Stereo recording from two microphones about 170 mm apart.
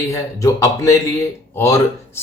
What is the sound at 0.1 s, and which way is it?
A man's voice, 20° left (ahead or behind).